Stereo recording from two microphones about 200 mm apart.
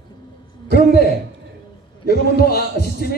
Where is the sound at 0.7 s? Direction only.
50° left (ahead or behind).